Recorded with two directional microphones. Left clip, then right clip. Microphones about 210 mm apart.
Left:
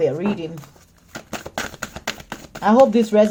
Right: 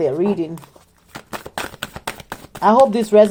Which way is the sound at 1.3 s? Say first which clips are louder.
Right 1 dB; 35° right (ahead or behind).